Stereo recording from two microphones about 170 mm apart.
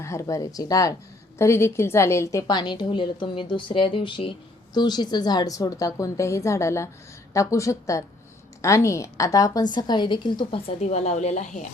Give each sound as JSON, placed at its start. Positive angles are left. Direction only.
{"t": 0.0, "sound": "a woman's voice", "side_deg": 15}
{"t": 10.8, "sound": "speech", "side_deg": 40}